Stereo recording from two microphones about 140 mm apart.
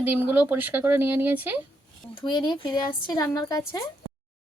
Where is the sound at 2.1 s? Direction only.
35° left (ahead or behind).